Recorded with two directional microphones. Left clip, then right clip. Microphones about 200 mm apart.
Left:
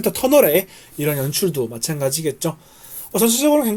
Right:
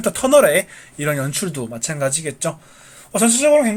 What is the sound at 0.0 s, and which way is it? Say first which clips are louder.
Speech: right 1 dB; 40° left (ahead or behind).